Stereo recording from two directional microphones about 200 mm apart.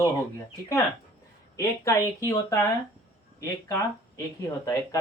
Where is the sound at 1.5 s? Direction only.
15° left (ahead or behind).